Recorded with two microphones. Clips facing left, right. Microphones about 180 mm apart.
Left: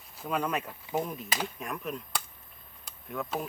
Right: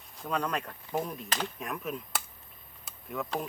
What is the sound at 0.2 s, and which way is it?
Speech, 5° left (ahead or behind).